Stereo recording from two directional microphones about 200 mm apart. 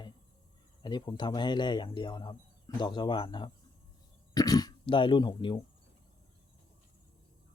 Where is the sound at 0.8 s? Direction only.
20° left (ahead or behind).